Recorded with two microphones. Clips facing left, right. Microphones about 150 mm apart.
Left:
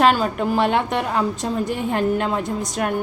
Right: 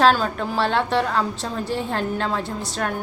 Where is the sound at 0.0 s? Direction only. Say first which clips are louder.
Left 1 dB; 10° left (ahead or behind).